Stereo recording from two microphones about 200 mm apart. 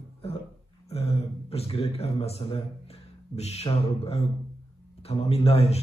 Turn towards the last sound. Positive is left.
turn(degrees=30)  # may be behind; listen again after turning